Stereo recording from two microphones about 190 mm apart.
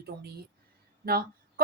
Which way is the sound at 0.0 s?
55° right (ahead or behind).